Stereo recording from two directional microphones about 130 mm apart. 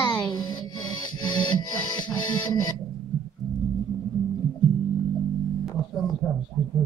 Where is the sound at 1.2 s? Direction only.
35° left (ahead or behind).